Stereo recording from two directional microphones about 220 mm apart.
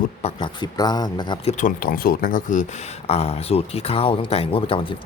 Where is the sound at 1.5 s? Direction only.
40° left (ahead or behind).